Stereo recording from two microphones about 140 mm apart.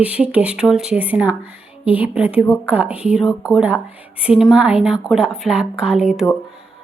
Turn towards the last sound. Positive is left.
turn(degrees=-5)  # may be behind; listen again after turning